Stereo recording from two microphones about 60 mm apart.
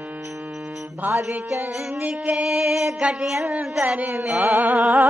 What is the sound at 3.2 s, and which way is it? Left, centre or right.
Speech, centre.